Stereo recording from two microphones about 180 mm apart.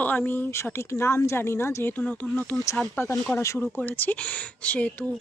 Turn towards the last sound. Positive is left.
turn(degrees=10)  # may be behind; listen again after turning